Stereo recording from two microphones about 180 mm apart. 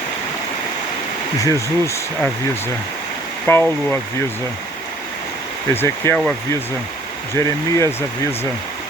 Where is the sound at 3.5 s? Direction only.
10° left (ahead or behind).